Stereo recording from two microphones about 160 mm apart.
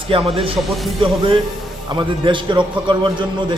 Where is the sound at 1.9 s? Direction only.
30° right (ahead or behind).